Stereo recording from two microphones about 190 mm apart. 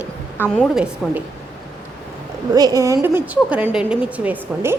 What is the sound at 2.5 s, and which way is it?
A woman's voice, 20° right (ahead or behind).